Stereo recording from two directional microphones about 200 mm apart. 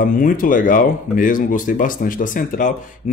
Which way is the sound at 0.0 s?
45° left (ahead or behind).